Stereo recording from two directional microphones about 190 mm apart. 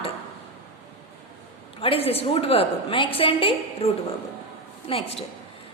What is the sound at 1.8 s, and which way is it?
A woman's voice, 30° left (ahead or behind).